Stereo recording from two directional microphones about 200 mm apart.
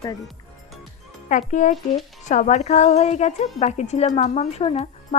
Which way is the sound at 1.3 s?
40° left (ahead or behind).